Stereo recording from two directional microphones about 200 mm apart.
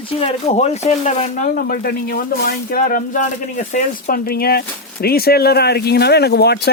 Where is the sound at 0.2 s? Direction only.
30° left (ahead or behind).